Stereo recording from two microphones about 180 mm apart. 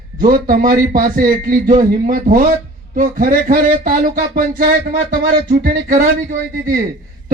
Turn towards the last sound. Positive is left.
turn(degrees=-50)  # may be behind; listen again after turning